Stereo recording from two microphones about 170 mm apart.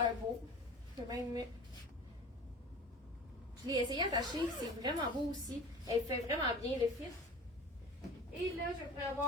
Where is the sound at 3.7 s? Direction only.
25° right (ahead or behind).